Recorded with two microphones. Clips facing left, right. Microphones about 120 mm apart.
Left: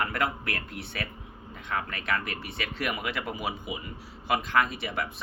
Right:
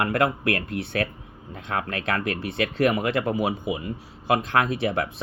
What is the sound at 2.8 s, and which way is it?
Speech, 30° right (ahead or behind).